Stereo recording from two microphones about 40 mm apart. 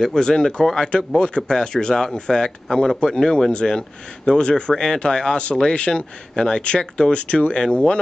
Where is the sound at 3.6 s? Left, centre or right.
Centre.